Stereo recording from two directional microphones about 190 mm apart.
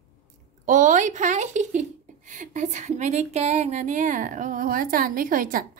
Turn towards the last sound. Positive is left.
turn(degrees=-45)  # may be behind; listen again after turning